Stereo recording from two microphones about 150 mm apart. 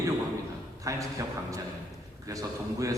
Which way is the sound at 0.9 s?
20° right (ahead or behind).